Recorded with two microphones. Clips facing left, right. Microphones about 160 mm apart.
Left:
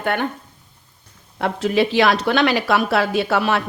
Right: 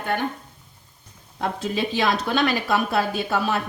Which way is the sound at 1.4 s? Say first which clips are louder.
Left 7 dB; 70° left (ahead or behind).